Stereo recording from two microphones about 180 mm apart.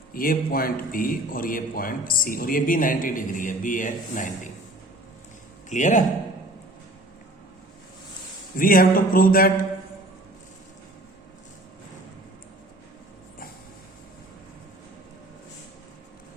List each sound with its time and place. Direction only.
0.1 s a man's voice: 55° left (ahead or behind)
5.6 s a man's voice: 45° left (ahead or behind)
8.5 s a man's voice: 55° left (ahead or behind)